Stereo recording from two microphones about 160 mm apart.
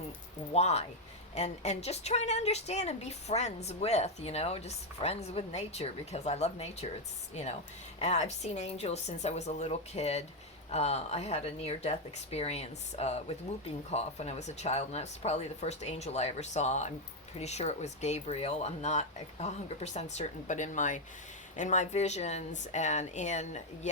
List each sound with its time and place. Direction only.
0.5 s a woman's voice: 40° left (ahead or behind)